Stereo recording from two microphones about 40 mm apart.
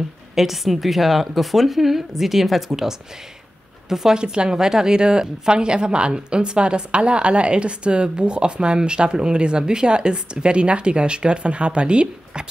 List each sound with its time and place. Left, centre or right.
0.4 s a woman's voice: centre
4.2 s a woman's voice: right